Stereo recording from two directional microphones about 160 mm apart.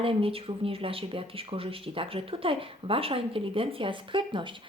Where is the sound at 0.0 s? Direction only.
35° right (ahead or behind).